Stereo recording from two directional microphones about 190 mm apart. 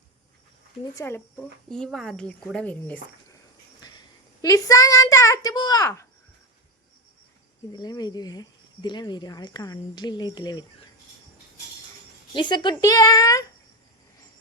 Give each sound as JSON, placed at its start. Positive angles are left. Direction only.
{"t": 0.9, "sound": "a child's voice", "side_deg": 10}
{"t": 3.8, "sound": "a sound", "side_deg": 20}
{"t": 4.4, "sound": "a child's voice", "side_deg": 20}
{"t": 7.7, "sound": "speech", "side_deg": 20}
{"t": 12.3, "sound": "speech", "side_deg": 25}